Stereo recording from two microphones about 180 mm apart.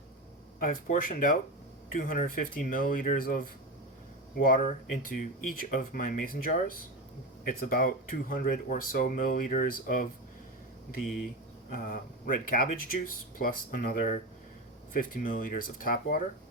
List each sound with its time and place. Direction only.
0.6 s speech: 50° left (ahead or behind)
11.9 s speech: 50° left (ahead or behind)